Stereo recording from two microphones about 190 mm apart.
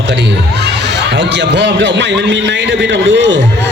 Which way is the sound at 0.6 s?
65° right (ahead or behind).